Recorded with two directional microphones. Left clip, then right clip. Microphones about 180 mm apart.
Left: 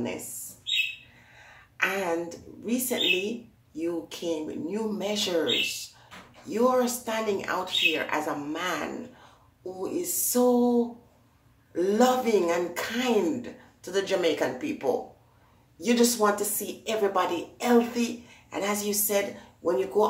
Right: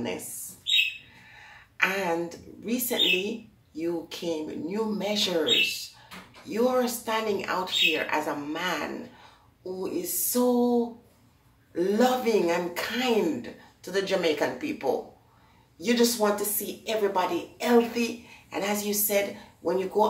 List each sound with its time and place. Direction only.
1.8 s a woman's voice: 5° left (ahead or behind)